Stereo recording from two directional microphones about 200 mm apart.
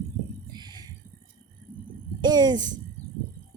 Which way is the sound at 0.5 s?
20° right (ahead or behind).